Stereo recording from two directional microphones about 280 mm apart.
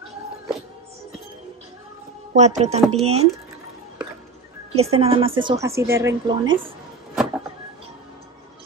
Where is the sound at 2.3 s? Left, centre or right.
Right.